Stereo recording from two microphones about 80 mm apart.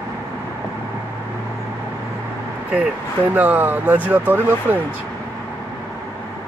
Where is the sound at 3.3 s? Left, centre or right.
Right.